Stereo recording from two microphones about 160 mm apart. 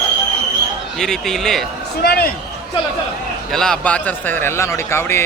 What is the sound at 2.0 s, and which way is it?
Speech, 75° left (ahead or behind).